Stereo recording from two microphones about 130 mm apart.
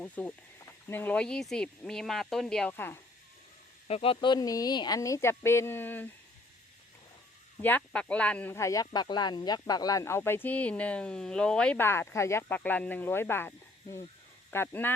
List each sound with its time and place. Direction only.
0.0 s speech: 10° left (ahead or behind)
2.7 s speech: 15° left (ahead or behind)
3.8 s speech: 50° left (ahead or behind); by 6.1 s 15° left (ahead or behind)
7.6 s speech: 10° left (ahead or behind)
8.5 s speech: 25° left (ahead or behind)
14.5 s speech: 15° left (ahead or behind)